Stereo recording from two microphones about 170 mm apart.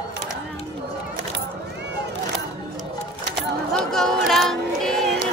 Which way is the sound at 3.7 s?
Centre (ahead or behind).